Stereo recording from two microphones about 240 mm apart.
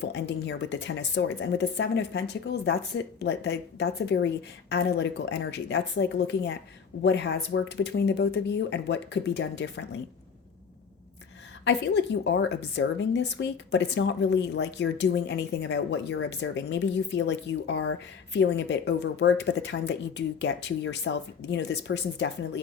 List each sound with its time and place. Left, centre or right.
0.0 s a woman's voice: left
11.6 s a woman's voice: left